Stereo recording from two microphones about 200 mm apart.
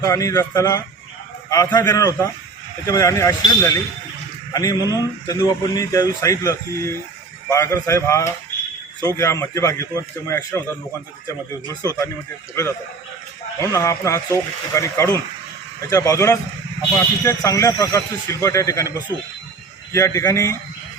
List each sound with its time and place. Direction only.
0.0 s a man's voice: 15° left (ahead or behind)
13.6 s a man's voice: 15° left (ahead or behind)